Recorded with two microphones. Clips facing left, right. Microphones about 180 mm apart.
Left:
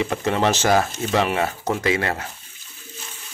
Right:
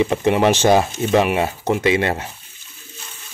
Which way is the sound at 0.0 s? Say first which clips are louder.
Right 5 dB; 20° right (ahead or behind).